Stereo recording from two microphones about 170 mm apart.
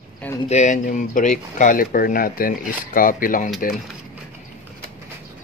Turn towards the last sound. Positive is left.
turn(degrees=55)  # may be behind; listen again after turning